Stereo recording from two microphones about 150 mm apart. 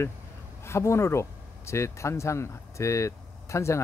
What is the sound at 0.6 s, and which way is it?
Speech, 20° left (ahead or behind).